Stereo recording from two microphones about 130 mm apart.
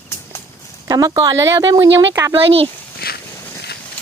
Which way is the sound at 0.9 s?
30° right (ahead or behind).